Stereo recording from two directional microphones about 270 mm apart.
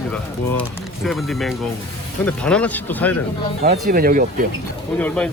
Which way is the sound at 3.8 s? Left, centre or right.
Right.